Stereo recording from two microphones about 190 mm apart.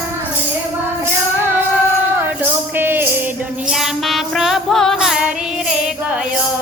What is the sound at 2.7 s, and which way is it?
Music, 10° right (ahead or behind).